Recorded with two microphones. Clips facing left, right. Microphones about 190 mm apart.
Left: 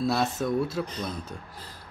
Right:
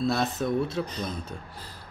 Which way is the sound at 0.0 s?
5° left (ahead or behind).